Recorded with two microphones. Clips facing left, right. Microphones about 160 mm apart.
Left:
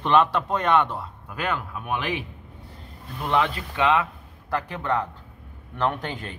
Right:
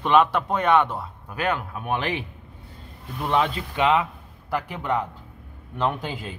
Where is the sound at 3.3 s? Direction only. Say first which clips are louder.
Even; 20° right (ahead or behind).